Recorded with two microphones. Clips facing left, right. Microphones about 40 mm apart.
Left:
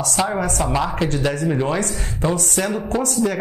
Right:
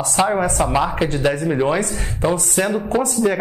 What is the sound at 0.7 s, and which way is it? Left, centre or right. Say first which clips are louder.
Speech: right 2 dB; centre.